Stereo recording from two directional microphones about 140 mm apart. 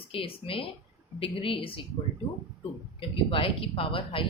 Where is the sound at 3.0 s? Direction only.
40° left (ahead or behind).